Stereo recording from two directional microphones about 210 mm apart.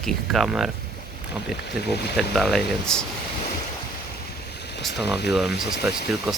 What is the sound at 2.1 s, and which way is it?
Speech, centre (ahead or behind).